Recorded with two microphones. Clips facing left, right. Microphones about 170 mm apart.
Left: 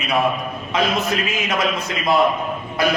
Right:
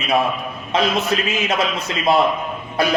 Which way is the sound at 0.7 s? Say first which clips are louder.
Right 2 dB; 30° right (ahead or behind).